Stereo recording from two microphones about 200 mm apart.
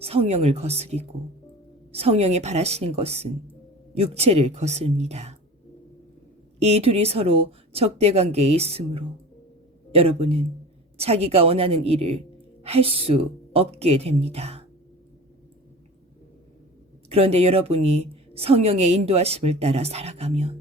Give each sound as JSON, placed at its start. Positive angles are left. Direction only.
{"t": 0.0, "sound": "a woman's voice", "side_deg": -30}
{"t": 6.6, "sound": "a woman's voice", "side_deg": -30}
{"t": 17.1, "sound": "a woman's voice", "side_deg": -30}